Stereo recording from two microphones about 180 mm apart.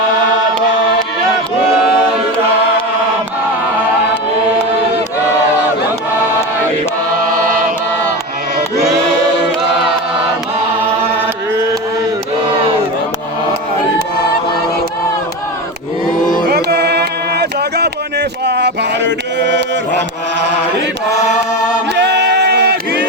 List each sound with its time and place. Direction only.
11.5 s mantra: 15° right (ahead or behind)
16.5 s a sound: 60° right (ahead or behind); by 19.6 s 75° right (ahead or behind)
21.9 s singing: 70° right (ahead or behind)